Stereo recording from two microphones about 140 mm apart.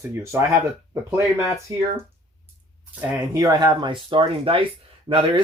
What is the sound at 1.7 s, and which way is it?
Speech, 20° right (ahead or behind).